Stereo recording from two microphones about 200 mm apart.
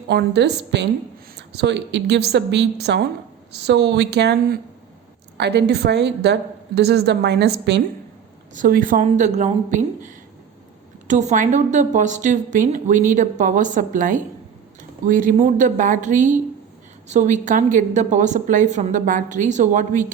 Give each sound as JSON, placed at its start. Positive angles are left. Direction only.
{"t": 0.1, "sound": "a woman's voice", "side_deg": -55}
{"t": 5.4, "sound": "a woman's voice", "side_deg": -55}
{"t": 8.5, "sound": "a woman's voice", "side_deg": -45}
{"t": 11.1, "sound": "a woman's voice", "side_deg": -35}